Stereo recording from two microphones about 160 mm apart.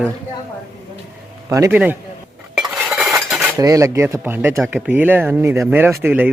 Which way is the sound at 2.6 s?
Centre (ahead or behind).